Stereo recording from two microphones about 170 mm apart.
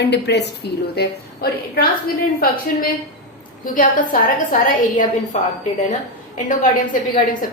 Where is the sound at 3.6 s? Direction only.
50° left (ahead or behind).